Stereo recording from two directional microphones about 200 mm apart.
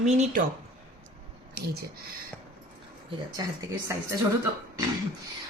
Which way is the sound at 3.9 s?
15° right (ahead or behind).